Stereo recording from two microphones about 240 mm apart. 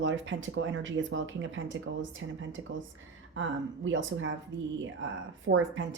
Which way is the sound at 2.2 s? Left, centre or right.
Right.